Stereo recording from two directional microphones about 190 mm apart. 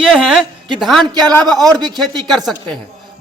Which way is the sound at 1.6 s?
20° right (ahead or behind).